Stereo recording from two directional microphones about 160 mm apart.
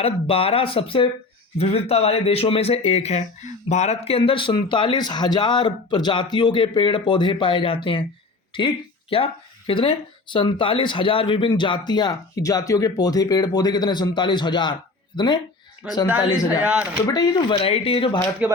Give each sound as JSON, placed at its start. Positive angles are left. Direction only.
{"t": 0.0, "sound": "speech", "side_deg": 35}
{"t": 15.8, "sound": "speech", "side_deg": -5}
{"t": 17.1, "sound": "speech", "side_deg": 25}
{"t": 18.4, "sound": "speech", "side_deg": -10}